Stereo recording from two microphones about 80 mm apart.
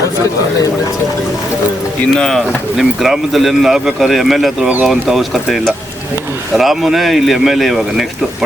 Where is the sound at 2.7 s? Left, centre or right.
Centre.